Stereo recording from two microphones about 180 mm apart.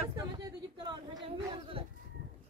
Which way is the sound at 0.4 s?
25° right (ahead or behind).